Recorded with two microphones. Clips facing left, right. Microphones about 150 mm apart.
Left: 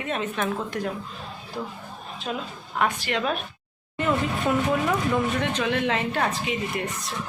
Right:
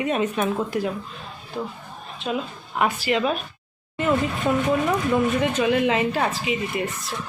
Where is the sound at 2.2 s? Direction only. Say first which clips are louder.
Right 5 dB; 10° right (ahead or behind).